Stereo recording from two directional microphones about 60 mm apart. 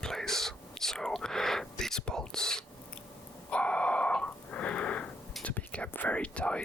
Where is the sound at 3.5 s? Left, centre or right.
Left.